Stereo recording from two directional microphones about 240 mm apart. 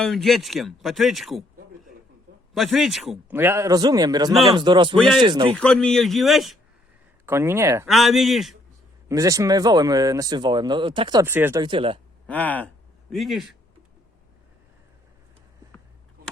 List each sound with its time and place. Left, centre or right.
0.0 s speech: centre
2.6 s speech: centre
4.9 s speech: centre
5.2 s speech: centre
5.5 s speech: centre
7.9 s speech: centre
9.0 s speech: centre
12.3 s speech: centre